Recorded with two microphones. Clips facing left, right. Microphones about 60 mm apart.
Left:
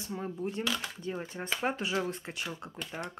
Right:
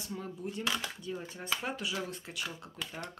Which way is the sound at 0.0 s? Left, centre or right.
Left.